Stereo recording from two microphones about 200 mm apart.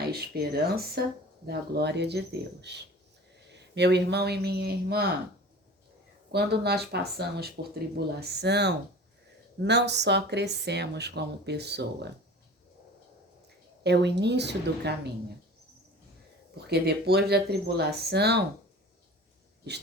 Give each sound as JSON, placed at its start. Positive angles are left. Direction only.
{"t": 0.0, "sound": "speech", "side_deg": -50}
{"t": 6.3, "sound": "speech", "side_deg": -55}
{"t": 13.8, "sound": "speech", "side_deg": -55}
{"t": 16.6, "sound": "speech", "side_deg": -55}